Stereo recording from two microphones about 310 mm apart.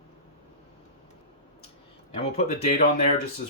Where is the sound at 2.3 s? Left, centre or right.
Left.